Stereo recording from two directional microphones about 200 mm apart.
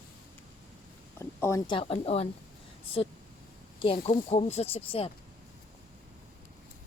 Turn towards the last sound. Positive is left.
turn(degrees=30)  # may be behind; listen again after turning